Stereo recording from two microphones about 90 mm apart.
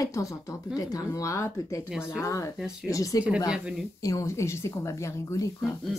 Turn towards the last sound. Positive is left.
turn(degrees=-5)  # may be behind; listen again after turning